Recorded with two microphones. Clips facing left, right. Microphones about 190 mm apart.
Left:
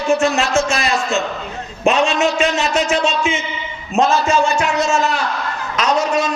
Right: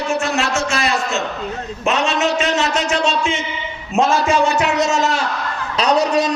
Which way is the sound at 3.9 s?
10° right (ahead or behind).